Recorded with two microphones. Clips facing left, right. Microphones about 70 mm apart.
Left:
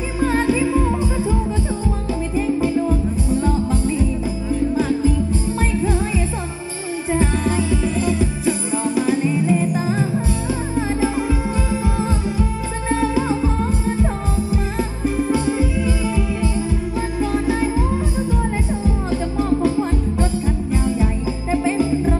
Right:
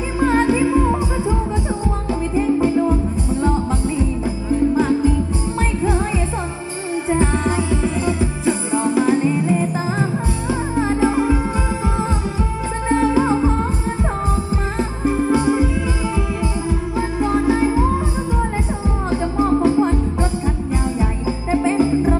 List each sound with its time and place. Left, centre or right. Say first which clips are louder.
0.2 s music: right 2 dB; centre
2.3 s music: right 3 dB; right
5.9 s music: right 1 dB; right
14.5 s music: right 1 dB; right
17.5 s music: right 3 dB; right
19.0 s music: right 4 dB; right